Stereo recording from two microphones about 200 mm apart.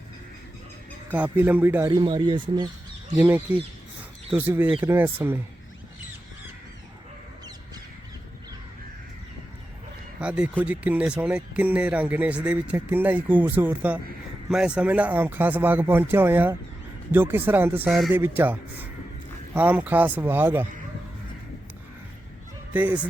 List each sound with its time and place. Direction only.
1.1 s speech: 10° right (ahead or behind)
1.9 s speech: 20° right (ahead or behind)
3.2 s speech: 10° right (ahead or behind)
10.2 s speech: 5° right (ahead or behind)
22.7 s speech: 10° right (ahead or behind)